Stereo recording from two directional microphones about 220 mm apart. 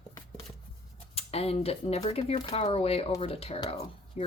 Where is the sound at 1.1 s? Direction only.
25° left (ahead or behind).